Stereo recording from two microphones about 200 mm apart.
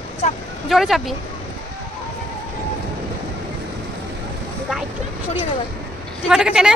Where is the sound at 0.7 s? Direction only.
Centre (ahead or behind).